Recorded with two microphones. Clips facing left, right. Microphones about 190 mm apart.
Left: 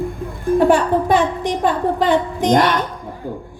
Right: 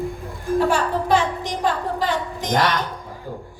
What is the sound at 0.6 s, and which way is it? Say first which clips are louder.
A woman's voice: left 6 dB; 55° left (ahead or behind).